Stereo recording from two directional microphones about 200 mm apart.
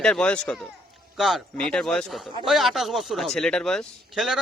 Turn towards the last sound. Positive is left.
turn(degrees=0)  # may be behind; listen again after turning